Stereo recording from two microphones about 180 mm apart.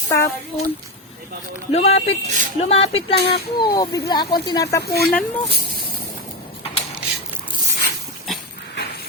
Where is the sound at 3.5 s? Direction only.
25° left (ahead or behind).